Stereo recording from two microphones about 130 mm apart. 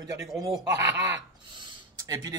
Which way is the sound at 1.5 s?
35° right (ahead or behind).